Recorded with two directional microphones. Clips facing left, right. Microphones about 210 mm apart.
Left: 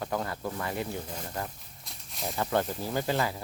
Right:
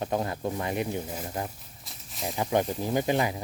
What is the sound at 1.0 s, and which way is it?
Speech, 10° right (ahead or behind).